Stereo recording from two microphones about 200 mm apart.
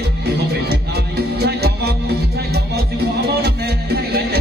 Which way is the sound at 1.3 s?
55° right (ahead or behind).